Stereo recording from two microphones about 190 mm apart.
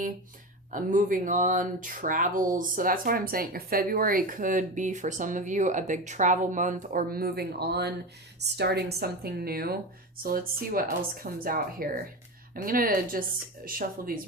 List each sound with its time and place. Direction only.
0.7 s a woman's voice: 45° right (ahead or behind)